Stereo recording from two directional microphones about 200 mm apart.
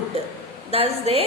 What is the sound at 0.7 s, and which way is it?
Speech, 30° right (ahead or behind).